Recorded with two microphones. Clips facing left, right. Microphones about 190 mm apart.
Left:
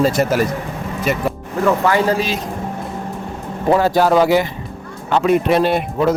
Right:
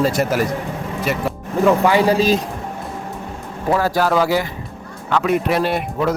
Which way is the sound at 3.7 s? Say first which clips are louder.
Left 4 dB; 25° left (ahead or behind).